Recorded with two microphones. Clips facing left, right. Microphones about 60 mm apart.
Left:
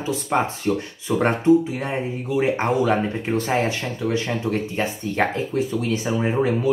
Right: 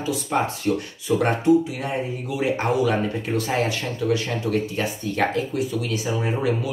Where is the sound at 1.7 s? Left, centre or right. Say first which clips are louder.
Left 1 dB; left.